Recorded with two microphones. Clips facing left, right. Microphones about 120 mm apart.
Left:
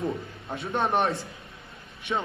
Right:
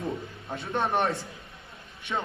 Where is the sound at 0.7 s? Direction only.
25° left (ahead or behind).